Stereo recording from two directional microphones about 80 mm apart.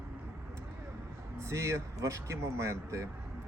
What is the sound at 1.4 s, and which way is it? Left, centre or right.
Speech, right.